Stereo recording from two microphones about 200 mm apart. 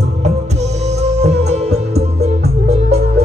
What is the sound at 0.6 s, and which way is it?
Music, 35° right (ahead or behind).